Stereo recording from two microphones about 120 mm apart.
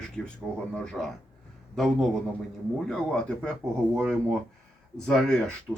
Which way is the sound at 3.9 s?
20° right (ahead or behind).